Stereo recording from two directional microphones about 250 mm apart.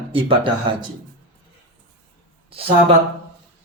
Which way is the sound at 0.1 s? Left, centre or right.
Right.